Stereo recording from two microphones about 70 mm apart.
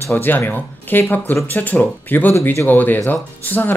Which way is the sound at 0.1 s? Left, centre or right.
Left.